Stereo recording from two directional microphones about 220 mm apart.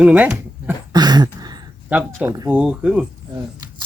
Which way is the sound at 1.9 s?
Centre (ahead or behind).